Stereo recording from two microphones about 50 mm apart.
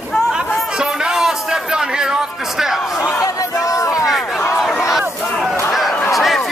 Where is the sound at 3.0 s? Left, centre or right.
Left.